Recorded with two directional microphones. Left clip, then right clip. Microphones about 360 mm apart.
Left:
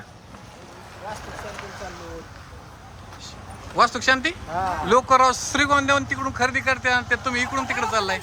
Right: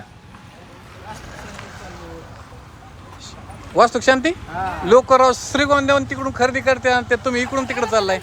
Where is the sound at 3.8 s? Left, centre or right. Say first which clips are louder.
Right 5 dB; centre.